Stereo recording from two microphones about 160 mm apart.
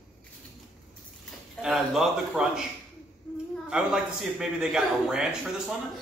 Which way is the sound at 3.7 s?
5° right (ahead or behind).